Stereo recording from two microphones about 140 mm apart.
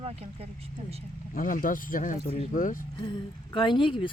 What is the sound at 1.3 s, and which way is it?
Speech, 75° left (ahead or behind).